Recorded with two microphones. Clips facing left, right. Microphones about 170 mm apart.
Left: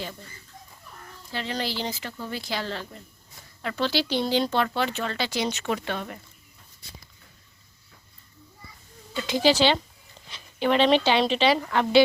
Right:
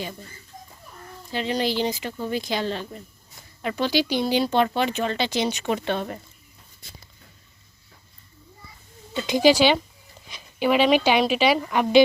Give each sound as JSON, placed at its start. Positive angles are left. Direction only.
{"t": 1.3, "sound": "speech", "side_deg": -15}
{"t": 9.1, "sound": "speech", "side_deg": -15}